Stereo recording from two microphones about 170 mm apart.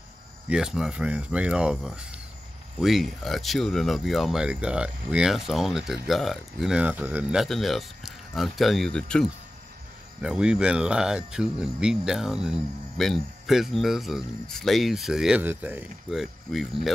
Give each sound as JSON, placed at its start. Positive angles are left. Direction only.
{"t": 0.5, "sound": "speech", "side_deg": -5}